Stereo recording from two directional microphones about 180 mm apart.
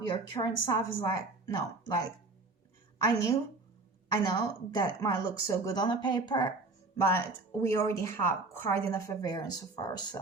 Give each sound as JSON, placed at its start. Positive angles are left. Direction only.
{"t": 0.0, "sound": "a woman's voice", "side_deg": 25}
{"t": 4.1, "sound": "a woman's voice", "side_deg": 25}